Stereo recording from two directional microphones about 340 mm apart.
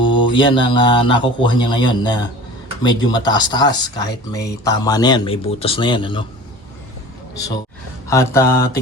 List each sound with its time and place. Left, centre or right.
0.3 s speech: centre
8.0 s speech: centre